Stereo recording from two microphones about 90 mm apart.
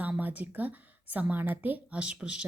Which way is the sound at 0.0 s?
20° right (ahead or behind).